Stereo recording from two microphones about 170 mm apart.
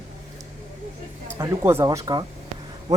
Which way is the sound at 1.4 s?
15° right (ahead or behind).